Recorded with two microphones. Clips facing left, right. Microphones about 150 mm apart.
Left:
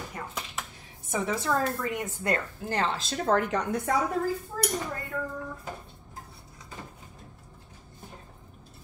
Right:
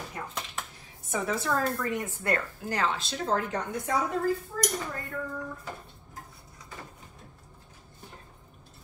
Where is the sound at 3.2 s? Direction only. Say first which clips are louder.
Left 4 dB; 70° left (ahead or behind).